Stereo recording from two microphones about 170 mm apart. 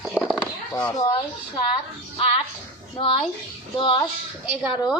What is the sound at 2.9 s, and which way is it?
A child's voice, 35° left (ahead or behind).